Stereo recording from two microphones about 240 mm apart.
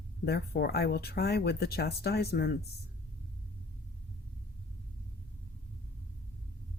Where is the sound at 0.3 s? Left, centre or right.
Left.